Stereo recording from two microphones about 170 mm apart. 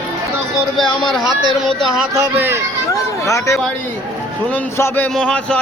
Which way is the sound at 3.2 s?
20° left (ahead or behind).